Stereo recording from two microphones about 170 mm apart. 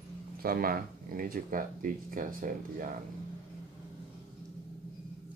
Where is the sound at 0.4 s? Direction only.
60° right (ahead or behind).